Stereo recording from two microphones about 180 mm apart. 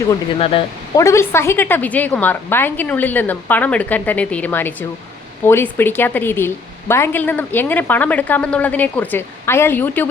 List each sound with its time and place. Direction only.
0.3 s speech: 30° left (ahead or behind)
0.9 s a woman's voice: 15° left (ahead or behind)